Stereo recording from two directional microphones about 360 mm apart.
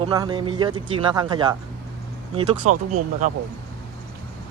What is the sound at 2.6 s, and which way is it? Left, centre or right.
Speech, right.